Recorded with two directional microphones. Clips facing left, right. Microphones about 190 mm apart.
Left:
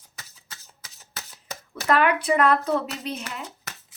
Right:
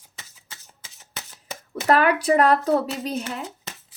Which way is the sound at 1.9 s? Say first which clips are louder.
Right 2 dB; 40° right (ahead or behind).